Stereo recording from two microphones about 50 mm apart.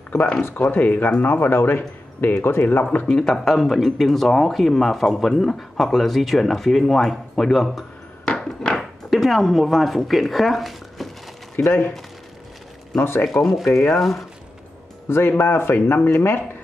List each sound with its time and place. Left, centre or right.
0.6 s speech: left
2.8 s speech: left
3.1 s speech: centre
8.3 s a sound: centre
8.7 s speech: centre
11.6 s speech: left
13.0 s speech: left
13.4 s speech: centre
15.0 s speech: left